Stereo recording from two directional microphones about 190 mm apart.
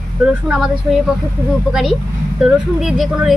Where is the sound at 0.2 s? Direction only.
5° right (ahead or behind).